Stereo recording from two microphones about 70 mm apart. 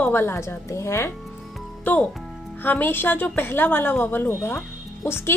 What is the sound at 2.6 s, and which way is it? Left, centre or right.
Speech, left.